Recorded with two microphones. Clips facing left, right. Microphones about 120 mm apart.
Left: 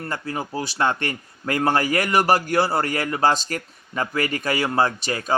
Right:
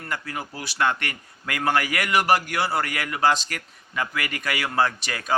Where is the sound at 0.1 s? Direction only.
30° left (ahead or behind).